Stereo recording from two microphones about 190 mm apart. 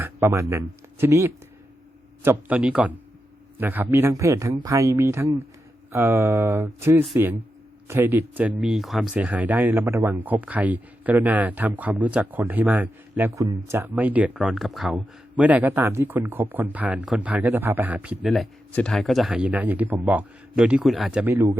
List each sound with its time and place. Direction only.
0.0 s speech: 15° right (ahead or behind)